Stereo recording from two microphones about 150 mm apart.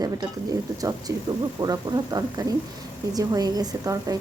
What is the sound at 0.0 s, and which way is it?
A woman's voice, 25° right (ahead or behind).